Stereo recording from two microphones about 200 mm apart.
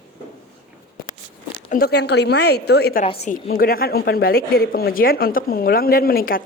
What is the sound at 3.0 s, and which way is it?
Speech, 30° left (ahead or behind).